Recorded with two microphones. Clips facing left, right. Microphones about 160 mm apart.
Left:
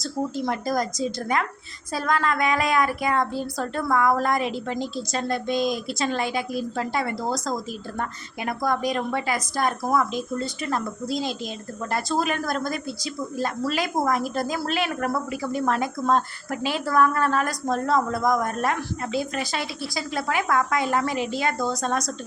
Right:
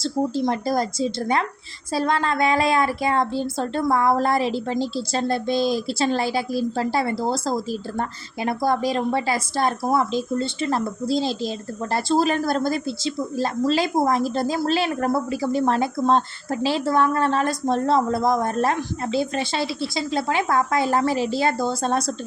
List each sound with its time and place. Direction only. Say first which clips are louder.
0.0 s a woman's voice: right 5 dB; 30° right (ahead or behind)